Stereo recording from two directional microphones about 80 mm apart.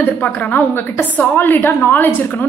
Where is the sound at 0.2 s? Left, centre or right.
Left.